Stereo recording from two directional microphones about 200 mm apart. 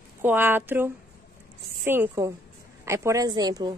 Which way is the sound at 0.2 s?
10° right (ahead or behind).